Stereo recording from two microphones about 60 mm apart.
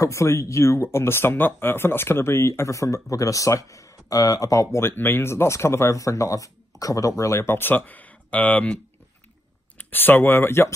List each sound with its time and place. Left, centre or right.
0.0 s speech: left
4.7 s speech: left
9.8 s speech: left